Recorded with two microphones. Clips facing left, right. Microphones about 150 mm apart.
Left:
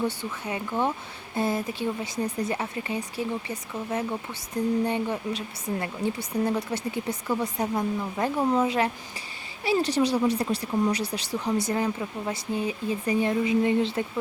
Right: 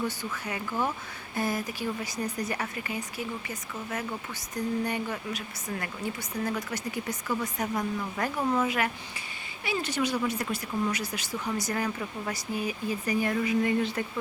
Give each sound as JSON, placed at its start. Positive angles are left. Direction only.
{"t": 0.4, "sound": "speech", "side_deg": 25}